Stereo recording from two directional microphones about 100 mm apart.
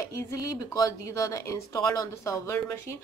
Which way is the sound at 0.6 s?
35° left (ahead or behind).